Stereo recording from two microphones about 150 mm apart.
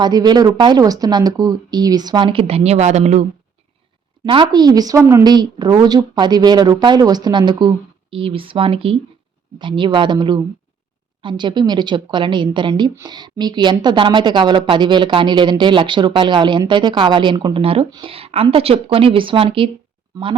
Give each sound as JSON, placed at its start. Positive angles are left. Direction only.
{"t": 0.0, "sound": "a woman's voice", "side_deg": -25}
{"t": 4.3, "sound": "a woman's voice", "side_deg": -30}
{"t": 20.1, "sound": "a woman's voice", "side_deg": -25}